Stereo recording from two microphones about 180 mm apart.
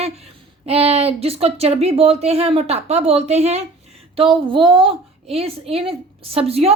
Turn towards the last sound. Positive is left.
turn(degrees=-35)  # may be behind; listen again after turning